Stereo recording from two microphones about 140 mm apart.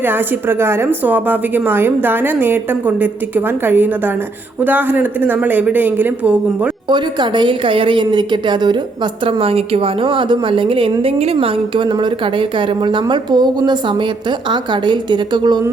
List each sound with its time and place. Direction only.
0.0 s a woman's voice: 15° right (ahead or behind)
6.8 s a woman's voice: 35° right (ahead or behind)
9.2 s a woman's voice: 45° right (ahead or behind)